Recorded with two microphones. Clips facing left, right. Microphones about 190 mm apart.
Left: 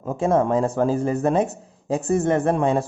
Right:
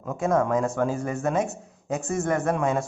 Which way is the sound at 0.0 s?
30° left (ahead or behind).